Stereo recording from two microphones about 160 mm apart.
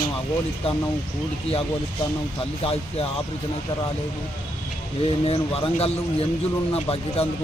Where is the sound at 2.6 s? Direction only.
35° left (ahead or behind).